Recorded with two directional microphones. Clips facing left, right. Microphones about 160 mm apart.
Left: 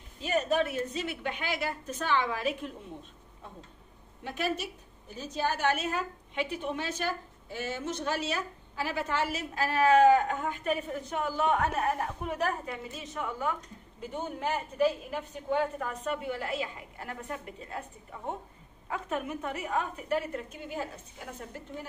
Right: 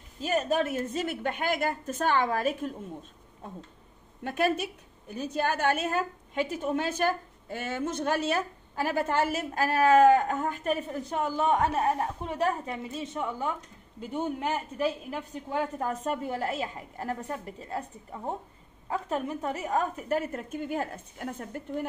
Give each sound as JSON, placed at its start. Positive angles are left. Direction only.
{"t": 0.2, "sound": "a woman's voice", "side_deg": -40}
{"t": 4.2, "sound": "a woman's voice", "side_deg": -50}
{"t": 15.8, "sound": "a woman's voice", "side_deg": -40}